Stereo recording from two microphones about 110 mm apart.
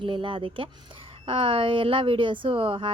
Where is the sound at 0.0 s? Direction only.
50° right (ahead or behind).